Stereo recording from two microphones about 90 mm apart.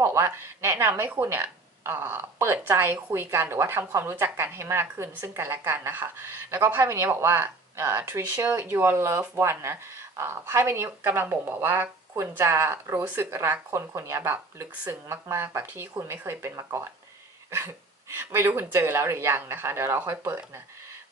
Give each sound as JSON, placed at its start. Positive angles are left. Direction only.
{"t": 0.0, "sound": "speech", "side_deg": -30}
{"t": 18.1, "sound": "speech", "side_deg": -25}